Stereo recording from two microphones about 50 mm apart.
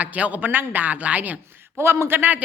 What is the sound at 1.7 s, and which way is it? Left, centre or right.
Speech, right.